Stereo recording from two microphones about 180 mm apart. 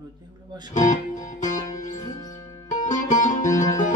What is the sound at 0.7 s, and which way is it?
Music, 45° left (ahead or behind).